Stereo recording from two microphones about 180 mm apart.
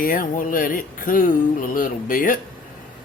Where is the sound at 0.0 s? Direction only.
50° left (ahead or behind).